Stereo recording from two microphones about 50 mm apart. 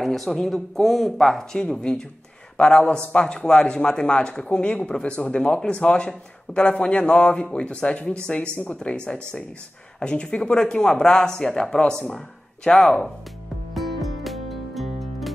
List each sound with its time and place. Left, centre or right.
0.0 s speech: centre
13.7 s music: centre